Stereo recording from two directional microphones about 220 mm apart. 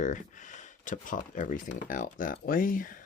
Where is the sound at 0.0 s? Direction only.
35° left (ahead or behind).